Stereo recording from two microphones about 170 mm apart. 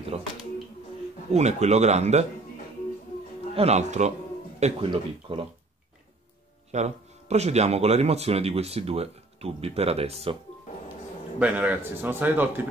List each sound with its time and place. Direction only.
0.1 s speech: 40° right (ahead or behind)
1.3 s speech: 40° right (ahead or behind)
3.5 s speech: 40° right (ahead or behind)
6.7 s speech: 40° right (ahead or behind)
11.3 s a man's voice: 10° right (ahead or behind)